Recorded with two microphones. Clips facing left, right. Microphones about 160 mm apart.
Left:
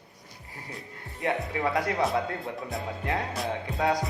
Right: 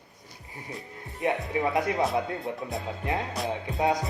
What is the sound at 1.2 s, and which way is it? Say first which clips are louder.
Speech: right 1 dB; 20° right (ahead or behind).